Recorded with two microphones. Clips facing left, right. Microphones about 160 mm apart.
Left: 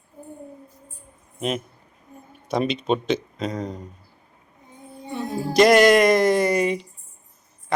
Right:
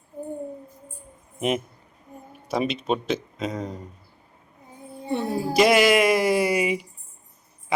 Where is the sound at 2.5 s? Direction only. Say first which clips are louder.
Left 2 dB; 5° right (ahead or behind).